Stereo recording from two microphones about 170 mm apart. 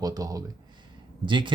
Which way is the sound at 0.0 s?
20° right (ahead or behind).